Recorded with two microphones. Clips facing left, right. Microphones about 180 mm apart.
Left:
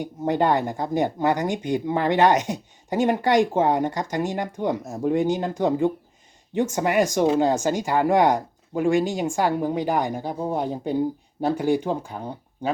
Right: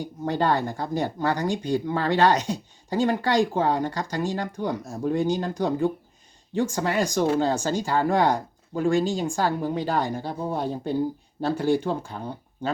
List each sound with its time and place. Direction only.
0.0 s speech: 20° left (ahead or behind)